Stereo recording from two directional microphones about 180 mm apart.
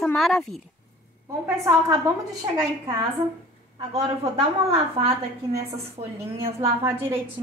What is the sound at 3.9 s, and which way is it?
A woman's voice, 35° right (ahead or behind).